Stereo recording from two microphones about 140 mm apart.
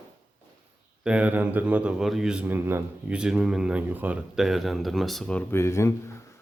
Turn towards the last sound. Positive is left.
turn(degrees=20)  # may be behind; listen again after turning